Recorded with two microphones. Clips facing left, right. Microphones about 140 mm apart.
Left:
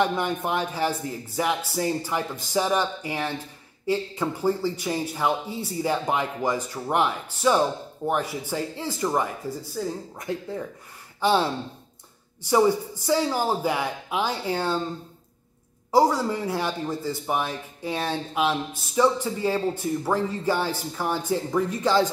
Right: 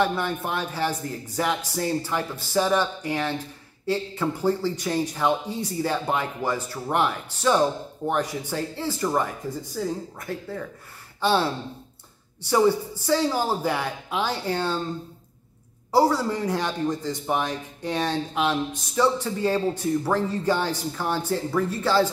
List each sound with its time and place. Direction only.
0.0 s a man's voice: 15° left (ahead or behind)
11.1 s speech: 15° left (ahead or behind)
12.4 s a man's voice: 10° left (ahead or behind)
15.9 s a man's voice: 10° left (ahead or behind)